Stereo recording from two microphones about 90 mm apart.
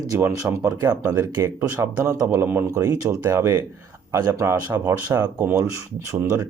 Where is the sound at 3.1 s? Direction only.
35° right (ahead or behind).